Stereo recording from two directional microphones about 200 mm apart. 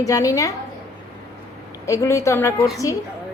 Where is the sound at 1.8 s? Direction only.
15° left (ahead or behind).